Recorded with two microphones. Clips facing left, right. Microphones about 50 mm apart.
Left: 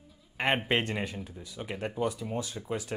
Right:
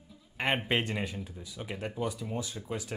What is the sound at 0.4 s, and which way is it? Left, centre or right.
Speech, centre.